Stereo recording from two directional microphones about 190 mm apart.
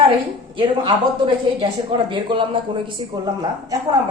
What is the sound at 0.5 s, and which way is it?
A woman's voice, 25° right (ahead or behind).